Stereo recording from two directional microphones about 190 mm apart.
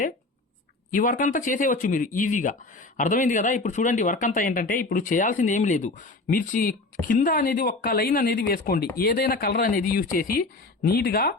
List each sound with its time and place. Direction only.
0.9 s speech: 45° left (ahead or behind)